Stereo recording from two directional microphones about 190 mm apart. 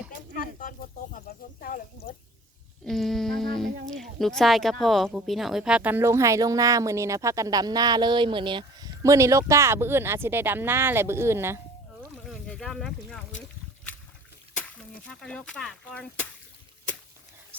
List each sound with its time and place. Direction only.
0.3 s snake: 45° left (ahead or behind)
2.8 s a sound: centre (ahead or behind)
3.8 s speech: centre (ahead or behind)
12.1 s boat: 5° left (ahead or behind)
14.5 s speech: 5° left (ahead or behind)